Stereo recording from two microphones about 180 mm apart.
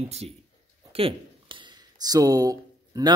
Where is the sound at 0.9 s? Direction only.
30° right (ahead or behind).